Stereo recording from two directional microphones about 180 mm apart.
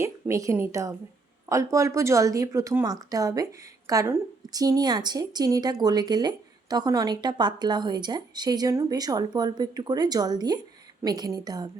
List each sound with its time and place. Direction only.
0.0 s a woman's voice: 15° right (ahead or behind)